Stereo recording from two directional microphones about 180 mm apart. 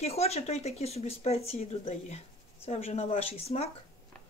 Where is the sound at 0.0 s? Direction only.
35° left (ahead or behind).